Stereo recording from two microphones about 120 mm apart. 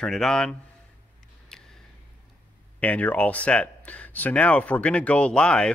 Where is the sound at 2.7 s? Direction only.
15° left (ahead or behind).